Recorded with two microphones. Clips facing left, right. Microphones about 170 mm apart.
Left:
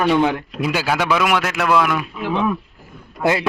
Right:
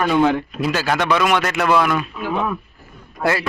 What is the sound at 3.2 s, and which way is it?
Speech, 20° left (ahead or behind).